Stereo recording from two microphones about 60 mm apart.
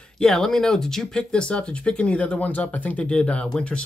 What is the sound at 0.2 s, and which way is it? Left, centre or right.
Speech, centre.